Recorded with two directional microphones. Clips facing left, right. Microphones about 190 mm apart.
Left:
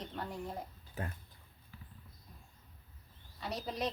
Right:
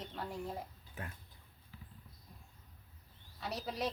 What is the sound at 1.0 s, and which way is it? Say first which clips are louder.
Speech: left 5 dB; 35° left (ahead or behind).